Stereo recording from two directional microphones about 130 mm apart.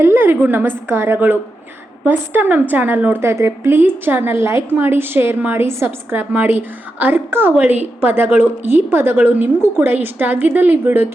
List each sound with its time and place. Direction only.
0.0 s a woman's voice: 15° right (ahead or behind)